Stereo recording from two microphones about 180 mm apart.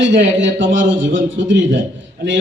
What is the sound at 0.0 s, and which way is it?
A man's voice, 90° right.